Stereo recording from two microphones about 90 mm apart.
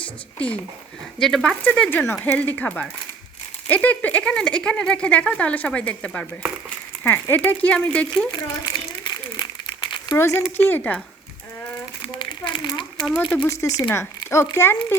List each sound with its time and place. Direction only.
0.0 s speech: 15° left (ahead or behind)
1.9 s speech: 25° left (ahead or behind)
8.3 s crumpling: 50° left (ahead or behind)
10.2 s speech: 35° left (ahead or behind)
10.6 s speech: 20° left (ahead or behind)
12.0 s crumpling: 60° left (ahead or behind)
13.5 s speech: 35° left (ahead or behind)